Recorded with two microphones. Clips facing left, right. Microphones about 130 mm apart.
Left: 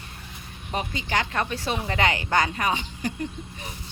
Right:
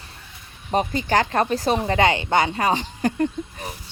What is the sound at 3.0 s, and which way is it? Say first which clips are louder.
Speech: right 8 dB; 50° right (ahead or behind).